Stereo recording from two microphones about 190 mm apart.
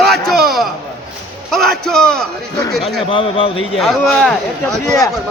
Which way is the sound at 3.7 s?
Centre (ahead or behind).